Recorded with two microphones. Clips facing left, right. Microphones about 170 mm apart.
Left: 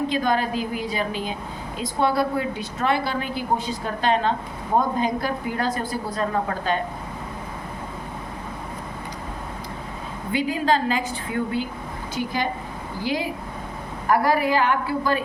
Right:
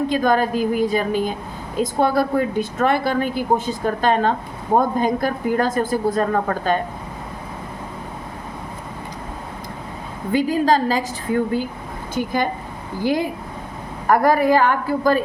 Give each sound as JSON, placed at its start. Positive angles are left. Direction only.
{"t": 0.1, "sound": "speech", "side_deg": -45}
{"t": 10.3, "sound": "a woman's voice", "side_deg": -40}
{"t": 12.1, "sound": "speech", "side_deg": -50}